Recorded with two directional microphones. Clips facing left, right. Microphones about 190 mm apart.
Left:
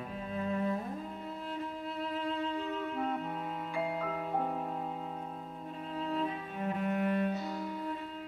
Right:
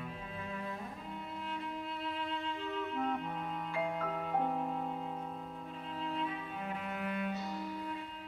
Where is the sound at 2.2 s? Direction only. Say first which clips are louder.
Left 6 dB; 40° left (ahead or behind).